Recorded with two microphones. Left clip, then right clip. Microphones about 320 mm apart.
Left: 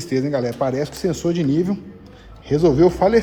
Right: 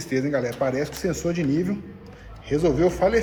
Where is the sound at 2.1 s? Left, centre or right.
Left.